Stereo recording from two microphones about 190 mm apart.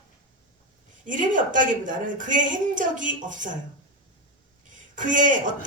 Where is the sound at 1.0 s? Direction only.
45° right (ahead or behind).